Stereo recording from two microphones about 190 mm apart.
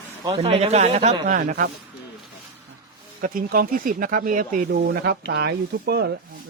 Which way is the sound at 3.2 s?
50° right (ahead or behind).